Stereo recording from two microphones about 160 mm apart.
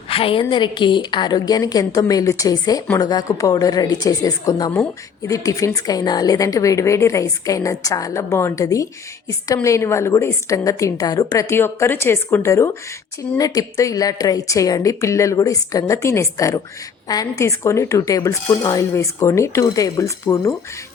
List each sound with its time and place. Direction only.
0.1 s a woman's voice: 35° left (ahead or behind); by 20.6 s 20° left (ahead or behind)